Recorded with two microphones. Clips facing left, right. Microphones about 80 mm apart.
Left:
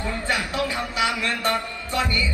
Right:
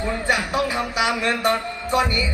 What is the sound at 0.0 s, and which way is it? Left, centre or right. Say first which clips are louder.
A man's voice: right 3 dB; right.